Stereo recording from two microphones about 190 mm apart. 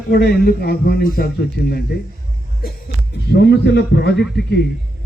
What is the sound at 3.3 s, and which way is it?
A man's voice, 60° left (ahead or behind).